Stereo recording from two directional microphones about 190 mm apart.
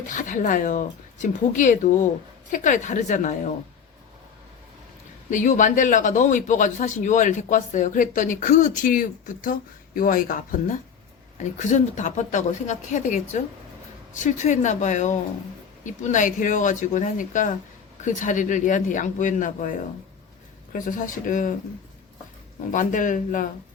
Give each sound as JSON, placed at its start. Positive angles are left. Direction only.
{"t": 0.1, "sound": "speech", "side_deg": 40}
{"t": 5.3, "sound": "speech", "side_deg": 40}
{"t": 20.7, "sound": "speech", "side_deg": 45}
{"t": 22.7, "sound": "speech", "side_deg": 45}